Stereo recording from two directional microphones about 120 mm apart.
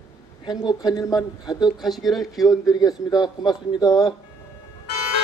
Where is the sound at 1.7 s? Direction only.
Centre (ahead or behind).